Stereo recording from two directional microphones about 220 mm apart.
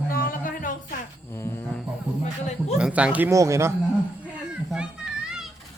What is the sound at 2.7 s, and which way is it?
Speech, 5° right (ahead or behind).